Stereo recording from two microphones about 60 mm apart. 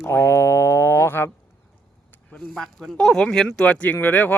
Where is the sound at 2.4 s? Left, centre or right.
Centre.